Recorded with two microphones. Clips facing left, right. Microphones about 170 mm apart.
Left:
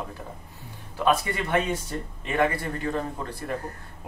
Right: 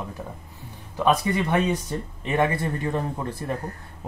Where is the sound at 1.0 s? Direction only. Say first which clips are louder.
Right 3 dB; 20° right (ahead or behind).